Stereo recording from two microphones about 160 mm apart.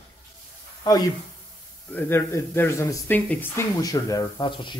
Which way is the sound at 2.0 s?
15° left (ahead or behind).